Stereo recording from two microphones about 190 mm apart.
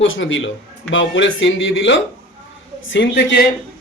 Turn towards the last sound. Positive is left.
turn(degrees=60)  # may be behind; listen again after turning